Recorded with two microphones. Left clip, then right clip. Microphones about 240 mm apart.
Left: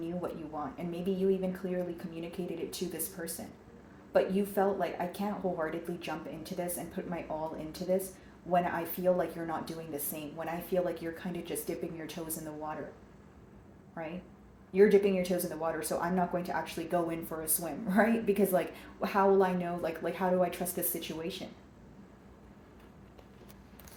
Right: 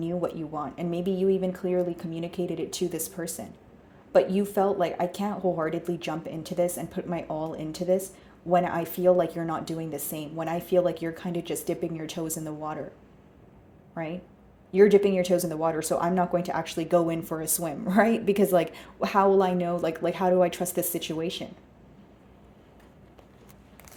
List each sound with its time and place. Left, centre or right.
0.0 s speech: right
14.7 s speech: right